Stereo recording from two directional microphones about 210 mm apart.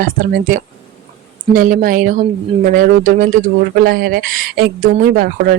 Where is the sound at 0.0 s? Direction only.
40° right (ahead or behind).